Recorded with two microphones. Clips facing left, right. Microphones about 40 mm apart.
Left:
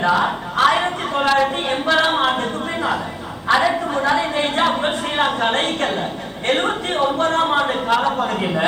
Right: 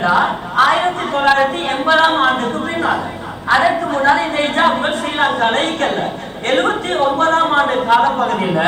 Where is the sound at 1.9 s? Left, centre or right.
Centre.